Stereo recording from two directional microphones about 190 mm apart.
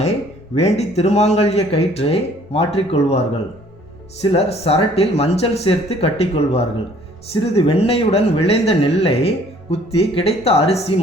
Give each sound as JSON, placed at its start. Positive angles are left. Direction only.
{"t": 0.5, "sound": "speech", "side_deg": 35}
{"t": 4.3, "sound": "speech", "side_deg": 35}